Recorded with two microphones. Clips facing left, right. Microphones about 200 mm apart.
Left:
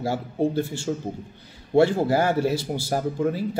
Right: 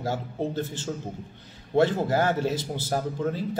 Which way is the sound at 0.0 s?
10° left (ahead or behind).